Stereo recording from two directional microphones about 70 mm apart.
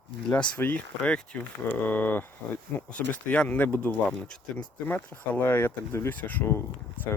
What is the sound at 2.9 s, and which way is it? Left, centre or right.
Speech, centre.